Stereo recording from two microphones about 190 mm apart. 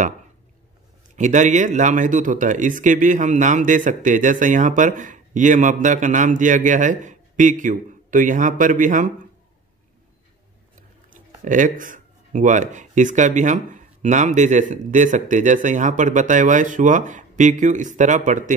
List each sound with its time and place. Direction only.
1.1 s speech: 40° right (ahead or behind)
10.8 s speech: 45° right (ahead or behind)